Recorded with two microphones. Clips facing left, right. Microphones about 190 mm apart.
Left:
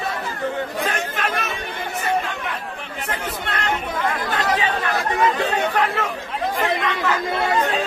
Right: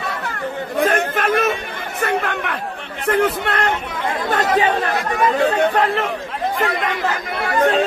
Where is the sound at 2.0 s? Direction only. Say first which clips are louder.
Right 4 dB; 65° right (ahead or behind).